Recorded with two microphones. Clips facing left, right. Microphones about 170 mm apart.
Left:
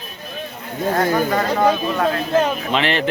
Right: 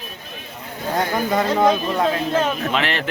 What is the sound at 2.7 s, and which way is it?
Speech, centre (ahead or behind).